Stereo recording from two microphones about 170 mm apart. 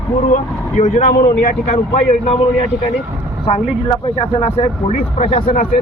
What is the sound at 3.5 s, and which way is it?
Speech, 35° left (ahead or behind).